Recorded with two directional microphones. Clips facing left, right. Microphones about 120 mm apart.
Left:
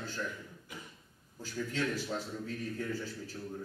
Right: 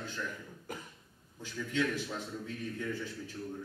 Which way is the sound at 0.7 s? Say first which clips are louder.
Right 6 dB; 45° right (ahead or behind).